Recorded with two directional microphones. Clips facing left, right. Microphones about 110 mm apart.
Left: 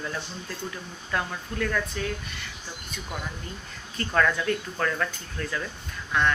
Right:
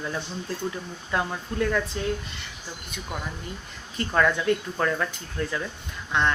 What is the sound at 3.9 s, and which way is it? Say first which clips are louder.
Speech: right 1 dB; 15° right (ahead or behind).